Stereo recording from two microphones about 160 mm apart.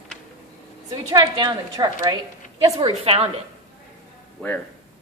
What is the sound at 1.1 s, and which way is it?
A woman's voice, 25° right (ahead or behind).